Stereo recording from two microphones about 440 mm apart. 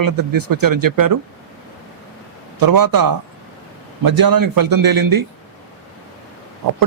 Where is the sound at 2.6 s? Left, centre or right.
Right.